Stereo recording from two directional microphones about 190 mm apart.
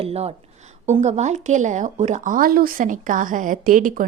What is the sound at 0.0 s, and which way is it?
A woman's voice, 30° right (ahead or behind).